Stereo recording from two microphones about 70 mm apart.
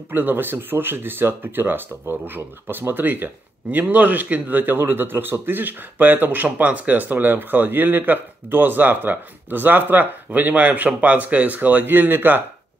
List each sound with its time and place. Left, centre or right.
0.1 s speech: right